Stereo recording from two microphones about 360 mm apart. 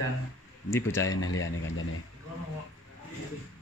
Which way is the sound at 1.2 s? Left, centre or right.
Left.